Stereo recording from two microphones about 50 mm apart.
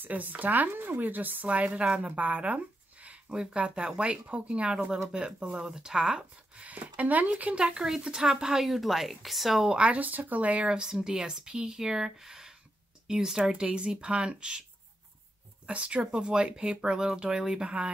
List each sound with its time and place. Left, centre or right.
0.0 s speech: right; by 6.7 s centre
6.7 s speech: right; by 9.8 s centre
9.8 s speech: right
10.7 s speech: centre
13.4 s speech: right
15.6 s speech: right